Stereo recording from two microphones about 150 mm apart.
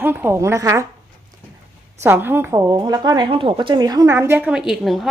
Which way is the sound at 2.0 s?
15° right (ahead or behind).